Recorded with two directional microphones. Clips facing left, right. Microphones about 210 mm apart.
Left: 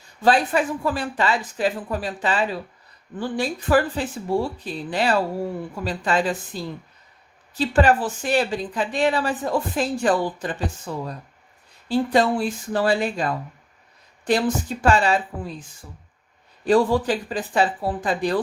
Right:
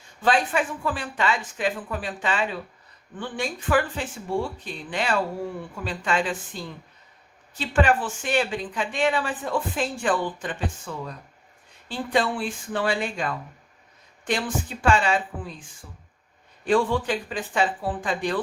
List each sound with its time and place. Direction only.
0.2 s speech: 35° left (ahead or behind)
16.6 s speech: 40° left (ahead or behind)